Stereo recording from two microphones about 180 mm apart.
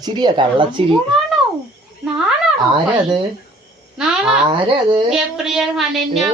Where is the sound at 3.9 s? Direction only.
5° right (ahead or behind).